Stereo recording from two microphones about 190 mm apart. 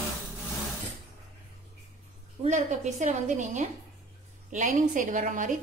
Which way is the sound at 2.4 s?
35° right (ahead or behind).